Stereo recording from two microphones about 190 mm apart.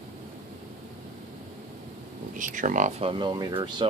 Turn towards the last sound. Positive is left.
turn(degrees=-25)  # may be behind; listen again after turning